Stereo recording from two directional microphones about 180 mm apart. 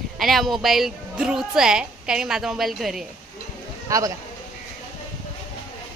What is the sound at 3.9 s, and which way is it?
Speech, 15° right (ahead or behind).